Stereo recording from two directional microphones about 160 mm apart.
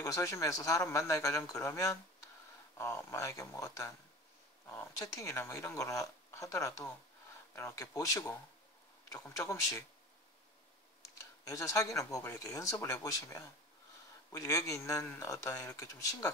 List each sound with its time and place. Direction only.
0.0 s speech: 20° left (ahead or behind)
11.4 s speech: 20° left (ahead or behind)